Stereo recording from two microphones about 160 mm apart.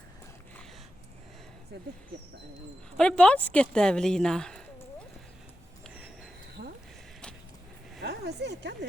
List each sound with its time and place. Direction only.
3.0 s speech: 5° left (ahead or behind)
8.0 s speech: 90° right